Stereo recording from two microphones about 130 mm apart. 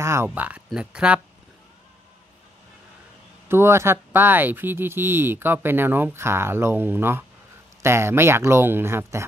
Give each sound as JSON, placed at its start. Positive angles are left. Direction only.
{"t": 0.0, "sound": "speech", "side_deg": -20}
{"t": 3.4, "sound": "speech", "side_deg": -20}